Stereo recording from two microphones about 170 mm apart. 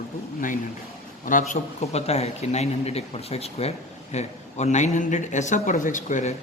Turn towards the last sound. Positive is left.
turn(degrees=45)  # may be behind; listen again after turning